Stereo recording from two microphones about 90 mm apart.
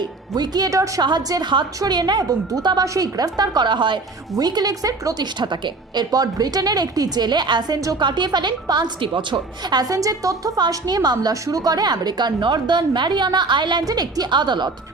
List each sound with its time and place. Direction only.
0.0 s a woman's voice: 50° right (ahead or behind)
1.0 s a woman's voice: 50° right (ahead or behind)
4.4 s a woman's voice: 50° right (ahead or behind); by 9.7 s 70° right (ahead or behind)
9.7 s a woman's voice: 45° right (ahead or behind)